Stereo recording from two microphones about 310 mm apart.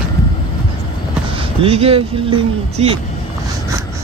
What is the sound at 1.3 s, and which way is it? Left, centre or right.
Speech, centre.